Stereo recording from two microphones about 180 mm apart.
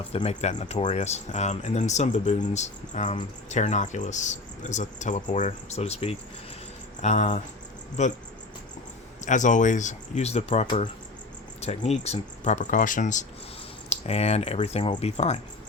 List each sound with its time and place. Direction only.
0.1 s speech: 35° left (ahead or behind)
9.2 s speech: 45° left (ahead or behind)